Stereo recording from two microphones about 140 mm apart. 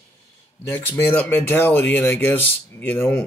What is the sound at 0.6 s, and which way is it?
Speech, 15° left (ahead or behind).